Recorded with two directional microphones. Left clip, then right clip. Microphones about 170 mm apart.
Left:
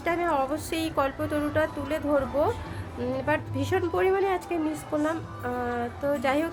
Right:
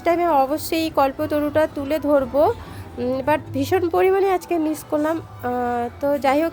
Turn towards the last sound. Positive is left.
turn(degrees=-35)  # may be behind; listen again after turning